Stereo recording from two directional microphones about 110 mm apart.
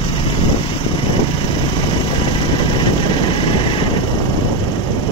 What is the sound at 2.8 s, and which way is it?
Vehicle, 50° left (ahead or behind).